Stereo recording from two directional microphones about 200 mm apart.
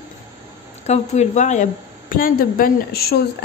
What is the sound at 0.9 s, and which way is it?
A woman's voice, 35° left (ahead or behind).